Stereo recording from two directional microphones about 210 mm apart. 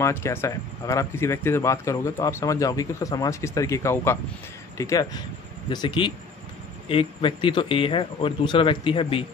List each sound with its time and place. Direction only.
0.0 s speech: 10° left (ahead or behind)